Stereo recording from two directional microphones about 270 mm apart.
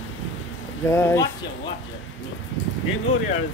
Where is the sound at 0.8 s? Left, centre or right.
Centre.